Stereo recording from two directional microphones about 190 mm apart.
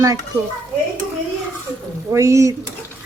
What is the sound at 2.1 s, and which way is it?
Speech, 15° right (ahead or behind).